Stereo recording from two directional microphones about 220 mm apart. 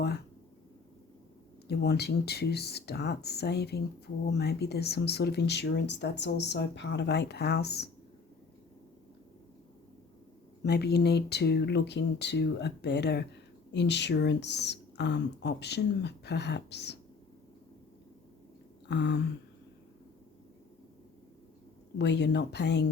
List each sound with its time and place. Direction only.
1.6 s speech: 50° left (ahead or behind)
10.6 s speech: 50° left (ahead or behind)
18.9 s speech: 50° left (ahead or behind)
21.9 s speech: 50° left (ahead or behind)